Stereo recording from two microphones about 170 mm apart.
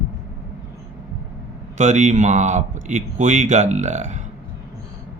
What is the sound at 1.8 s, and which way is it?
Speech, 45° right (ahead or behind).